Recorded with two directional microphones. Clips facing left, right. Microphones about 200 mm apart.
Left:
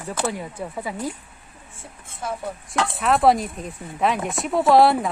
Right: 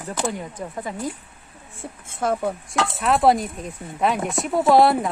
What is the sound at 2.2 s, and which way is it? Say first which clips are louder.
Speech: right 7 dB; 55° right (ahead or behind).